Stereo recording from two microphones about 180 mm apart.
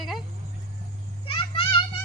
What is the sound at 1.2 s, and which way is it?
Children playing, 30° left (ahead or behind).